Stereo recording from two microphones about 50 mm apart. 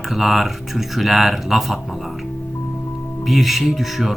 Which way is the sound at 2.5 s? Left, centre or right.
Left.